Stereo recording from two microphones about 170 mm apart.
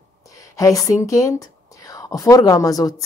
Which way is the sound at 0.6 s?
20° left (ahead or behind).